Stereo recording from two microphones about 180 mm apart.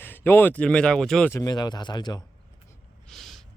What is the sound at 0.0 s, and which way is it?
Speech, 10° left (ahead or behind).